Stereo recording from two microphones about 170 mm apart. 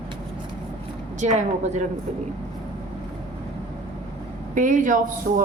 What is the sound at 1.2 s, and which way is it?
Speech, 40° right (ahead or behind).